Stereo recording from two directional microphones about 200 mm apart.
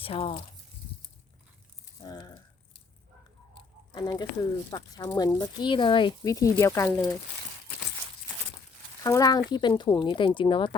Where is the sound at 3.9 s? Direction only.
20° left (ahead or behind).